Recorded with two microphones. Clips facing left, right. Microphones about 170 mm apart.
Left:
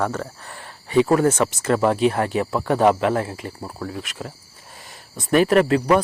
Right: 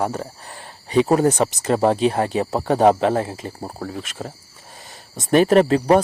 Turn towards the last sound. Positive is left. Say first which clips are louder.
# right 2 dB
turn(degrees=-30)  # may be behind; listen again after turning